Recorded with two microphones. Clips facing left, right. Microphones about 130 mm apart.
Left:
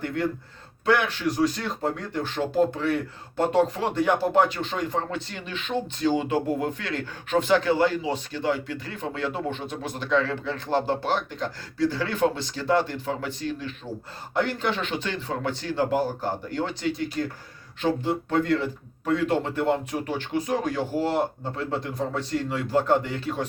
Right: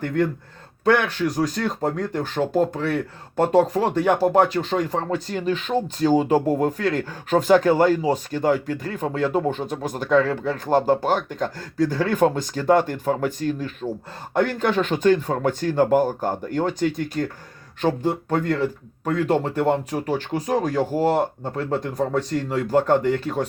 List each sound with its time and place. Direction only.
0.9 s speech: 40° right (ahead or behind)